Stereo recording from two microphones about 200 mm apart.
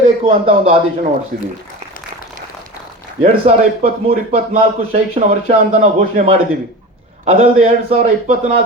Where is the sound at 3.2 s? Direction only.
30° right (ahead or behind).